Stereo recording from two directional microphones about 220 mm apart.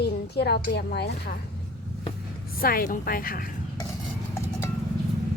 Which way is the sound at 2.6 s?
40° left (ahead or behind).